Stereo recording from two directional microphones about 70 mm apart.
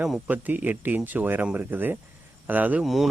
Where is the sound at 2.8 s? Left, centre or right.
Centre.